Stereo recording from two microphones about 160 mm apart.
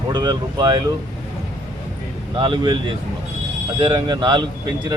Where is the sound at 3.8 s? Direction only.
30° right (ahead or behind).